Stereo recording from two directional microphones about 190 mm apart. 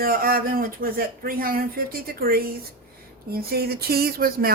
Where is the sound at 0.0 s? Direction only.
50° right (ahead or behind).